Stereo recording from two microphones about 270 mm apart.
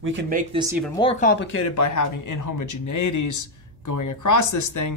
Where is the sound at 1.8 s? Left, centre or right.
Left.